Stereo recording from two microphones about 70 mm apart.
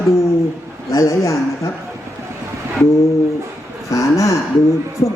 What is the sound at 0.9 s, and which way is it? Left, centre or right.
Speech, left.